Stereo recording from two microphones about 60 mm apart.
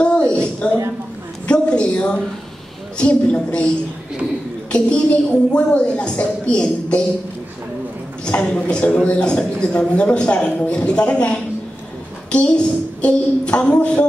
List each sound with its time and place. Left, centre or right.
0.0 s a sound: centre
3.0 s a man's voice: centre
8.3 s a man's voice: centre